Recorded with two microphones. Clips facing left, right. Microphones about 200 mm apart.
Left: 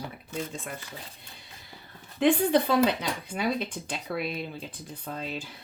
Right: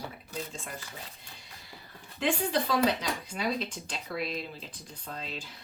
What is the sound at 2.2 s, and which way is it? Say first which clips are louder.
Speech: left 7 dB; 60° left (ahead or behind).